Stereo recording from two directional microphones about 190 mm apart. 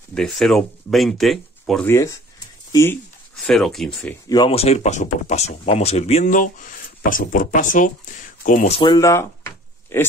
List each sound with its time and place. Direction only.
0.1 s speech: centre (ahead or behind)
1.9 s speech: 15° left (ahead or behind)
3.4 s speech: centre (ahead or behind)
4.3 s speech: 25° left (ahead or behind)
8.8 s drawer open or close: 15° left (ahead or behind)